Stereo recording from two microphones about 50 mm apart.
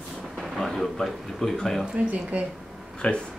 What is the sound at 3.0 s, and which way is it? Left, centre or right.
Speech, centre.